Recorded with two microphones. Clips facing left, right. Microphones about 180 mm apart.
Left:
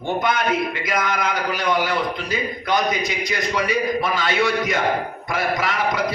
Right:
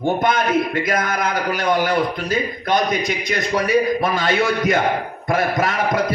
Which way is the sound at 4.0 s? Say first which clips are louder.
Right 2 dB; 50° right (ahead or behind).